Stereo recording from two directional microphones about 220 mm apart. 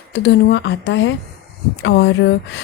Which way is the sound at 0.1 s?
50° left (ahead or behind).